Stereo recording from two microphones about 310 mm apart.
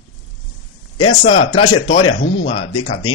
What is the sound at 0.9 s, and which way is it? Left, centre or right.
A man's voice, centre.